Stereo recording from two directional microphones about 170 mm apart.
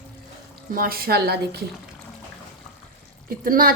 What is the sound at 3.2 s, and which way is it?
Speech, 55° right (ahead or behind).